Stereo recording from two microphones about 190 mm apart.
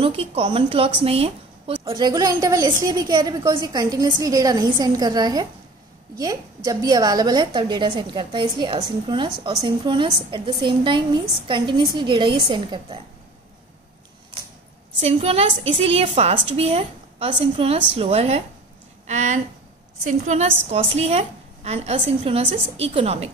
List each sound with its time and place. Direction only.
0.0 s a woman's voice: 30° right (ahead or behind)
15.0 s a woman's voice: 35° right (ahead or behind)